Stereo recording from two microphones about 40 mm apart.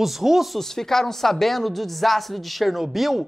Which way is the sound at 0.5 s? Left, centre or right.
Centre.